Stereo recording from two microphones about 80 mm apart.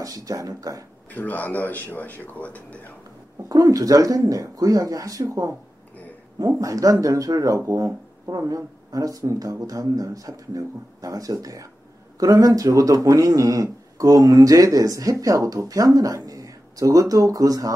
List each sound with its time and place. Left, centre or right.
0.0 s speech: right
1.1 s speech: left
3.4 s speech: right
6.6 s speech: right